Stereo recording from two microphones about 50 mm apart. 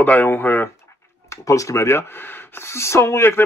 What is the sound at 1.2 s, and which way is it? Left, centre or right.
Speech, left.